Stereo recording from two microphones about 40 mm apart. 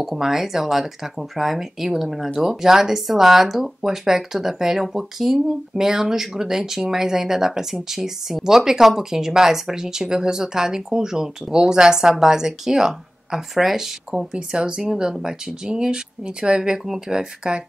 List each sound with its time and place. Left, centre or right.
0.0 s speech: centre
14.3 s speech: right
16.8 s speech: centre
17.4 s speech: right